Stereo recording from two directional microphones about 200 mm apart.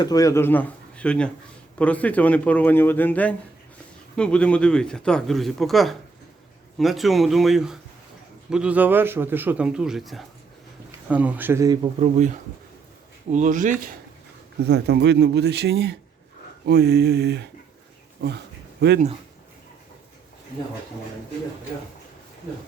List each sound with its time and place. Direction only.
0.0 s a man's voice: 20° left (ahead or behind); by 11.9 s 20° right (ahead or behind)
11.9 s speech: 35° right (ahead or behind)
13.3 s speech: 40° right (ahead or behind)
14.6 s a man's voice: 55° right (ahead or behind)